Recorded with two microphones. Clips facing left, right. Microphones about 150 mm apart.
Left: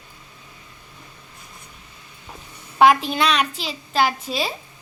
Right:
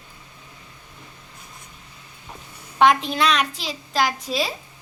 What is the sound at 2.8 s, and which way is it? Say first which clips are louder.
A child's voice: left 2 dB; 5° left (ahead or behind).